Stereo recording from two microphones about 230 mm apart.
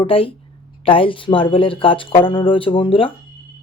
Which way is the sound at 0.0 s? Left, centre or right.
Left.